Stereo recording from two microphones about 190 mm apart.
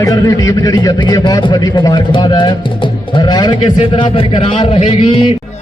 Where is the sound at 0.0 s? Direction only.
15° left (ahead or behind).